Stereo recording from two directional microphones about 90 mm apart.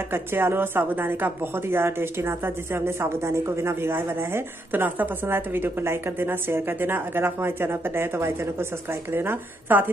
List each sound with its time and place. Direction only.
0.1 s speech: 25° right (ahead or behind)